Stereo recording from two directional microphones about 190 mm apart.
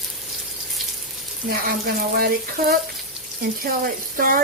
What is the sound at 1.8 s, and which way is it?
Speech, 55° right (ahead or behind).